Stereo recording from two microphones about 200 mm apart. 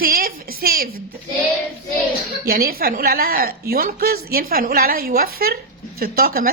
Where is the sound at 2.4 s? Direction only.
50° right (ahead or behind).